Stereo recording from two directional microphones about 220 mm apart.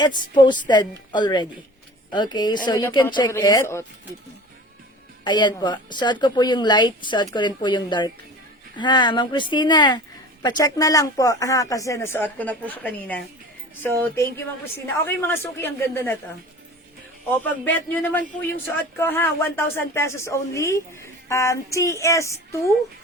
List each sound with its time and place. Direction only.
0.0 s a woman's voice: 20° left (ahead or behind)
5.2 s a woman's voice: 20° left (ahead or behind)
17.3 s speech: 10° left (ahead or behind)